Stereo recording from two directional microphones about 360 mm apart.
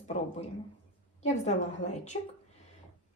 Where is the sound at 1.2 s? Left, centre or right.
Centre.